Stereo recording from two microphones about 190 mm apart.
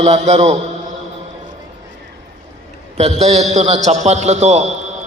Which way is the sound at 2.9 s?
35° right (ahead or behind).